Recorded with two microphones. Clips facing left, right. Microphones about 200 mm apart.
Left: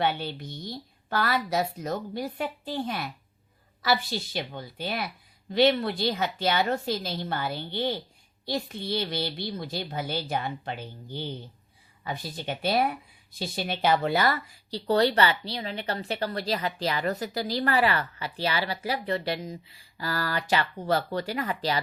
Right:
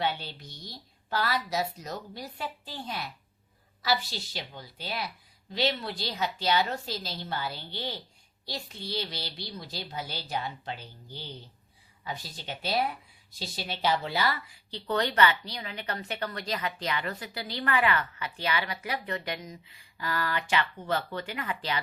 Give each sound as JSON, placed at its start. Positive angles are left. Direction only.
{"t": 0.0, "sound": "a woman's voice", "side_deg": 55}